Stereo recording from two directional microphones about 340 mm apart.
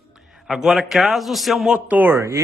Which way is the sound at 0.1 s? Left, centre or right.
Centre.